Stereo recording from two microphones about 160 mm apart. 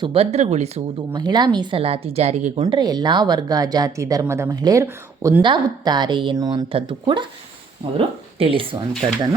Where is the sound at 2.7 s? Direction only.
25° right (ahead or behind).